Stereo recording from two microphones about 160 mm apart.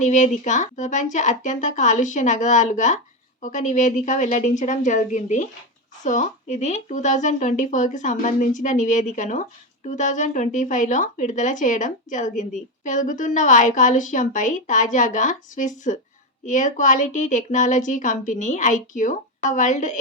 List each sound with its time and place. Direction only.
0.0 s a woman's voice: 50° left (ahead or behind)